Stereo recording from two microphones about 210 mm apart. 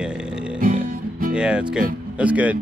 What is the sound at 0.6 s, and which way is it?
Music, 45° right (ahead or behind).